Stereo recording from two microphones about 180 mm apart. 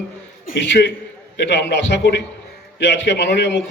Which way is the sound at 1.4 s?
70° left (ahead or behind).